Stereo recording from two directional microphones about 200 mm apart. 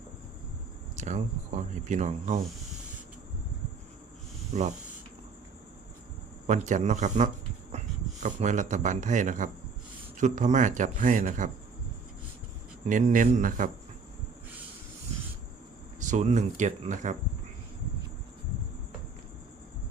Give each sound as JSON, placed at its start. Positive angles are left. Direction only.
{"t": 0.9, "sound": "speech", "side_deg": -35}
{"t": 4.5, "sound": "speech", "side_deg": -35}
{"t": 6.5, "sound": "speech", "side_deg": -35}
{"t": 7.7, "sound": "a sound", "side_deg": -35}
{"t": 8.2, "sound": "speech", "side_deg": -35}
{"t": 12.8, "sound": "speech", "side_deg": -35}
{"t": 16.0, "sound": "speech", "side_deg": -35}